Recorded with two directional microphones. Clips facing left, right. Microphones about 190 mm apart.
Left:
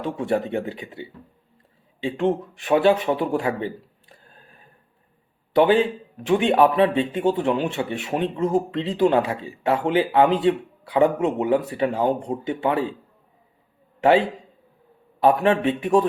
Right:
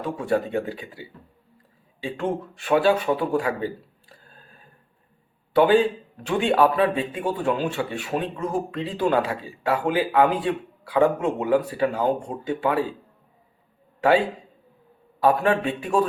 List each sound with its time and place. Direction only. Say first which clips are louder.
0.0 s speech: left 1 dB; 25° left (ahead or behind)
5.5 s speech: even; 20° left (ahead or behind)
14.0 s a man's voice: left 2 dB; 20° left (ahead or behind)